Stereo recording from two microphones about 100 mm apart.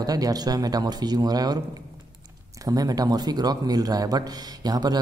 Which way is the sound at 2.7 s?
40° right (ahead or behind).